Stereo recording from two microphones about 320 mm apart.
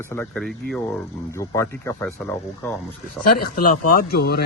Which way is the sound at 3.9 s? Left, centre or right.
Left.